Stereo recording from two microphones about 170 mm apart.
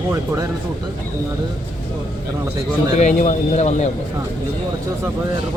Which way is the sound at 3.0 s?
45° left (ahead or behind).